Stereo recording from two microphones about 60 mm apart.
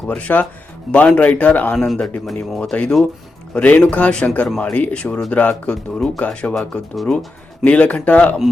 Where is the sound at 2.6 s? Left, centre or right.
Centre.